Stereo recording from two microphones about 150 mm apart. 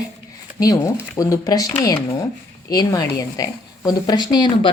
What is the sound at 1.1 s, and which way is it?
A woman's voice, 25° left (ahead or behind).